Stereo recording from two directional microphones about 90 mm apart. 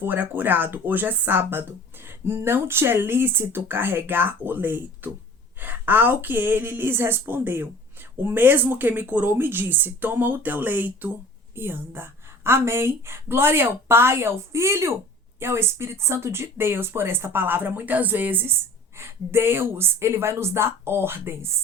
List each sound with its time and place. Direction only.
0.0 s a woman's voice: 20° right (ahead or behind)